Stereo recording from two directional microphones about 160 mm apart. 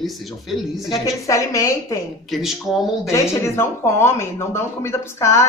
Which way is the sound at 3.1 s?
15° left (ahead or behind).